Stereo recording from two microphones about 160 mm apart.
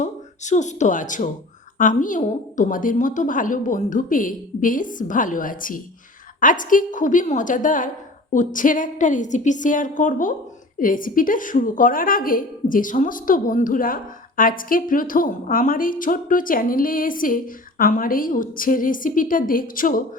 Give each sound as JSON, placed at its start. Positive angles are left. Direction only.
{"t": 0.0, "sound": "a woman's voice", "side_deg": 50}